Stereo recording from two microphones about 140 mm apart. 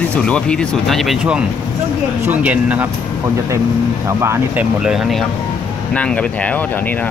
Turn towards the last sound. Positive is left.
turn(degrees=10)  # may be behind; listen again after turning